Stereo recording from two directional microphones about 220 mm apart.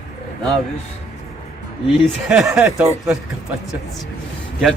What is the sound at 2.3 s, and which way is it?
Speech, 5° right (ahead or behind).